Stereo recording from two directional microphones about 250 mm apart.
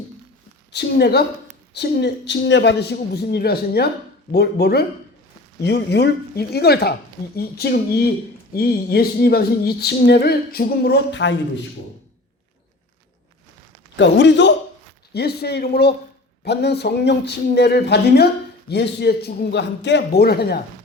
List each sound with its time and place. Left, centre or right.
0.7 s speech: left
13.9 s a man's voice: left